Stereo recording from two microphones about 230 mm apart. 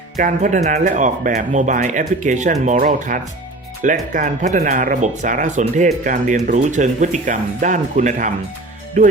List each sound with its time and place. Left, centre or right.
0.2 s speech: right